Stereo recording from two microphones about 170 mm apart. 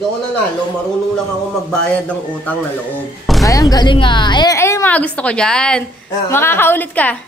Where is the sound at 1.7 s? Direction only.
5° left (ahead or behind).